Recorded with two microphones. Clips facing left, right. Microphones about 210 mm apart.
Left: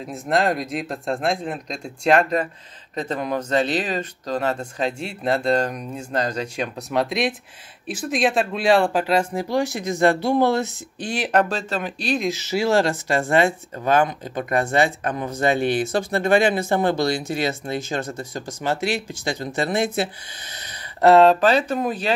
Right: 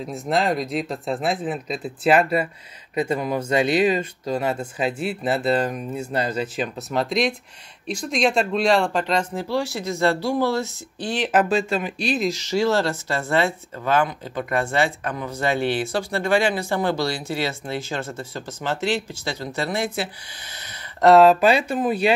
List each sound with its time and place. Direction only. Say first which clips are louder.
0.1 s speech: left 1 dB; centre (ahead or behind)
11.2 s speech: right 2 dB; 5° right (ahead or behind); by 20.1 s 20° left (ahead or behind)
21.1 s speech: even; 5° right (ahead or behind)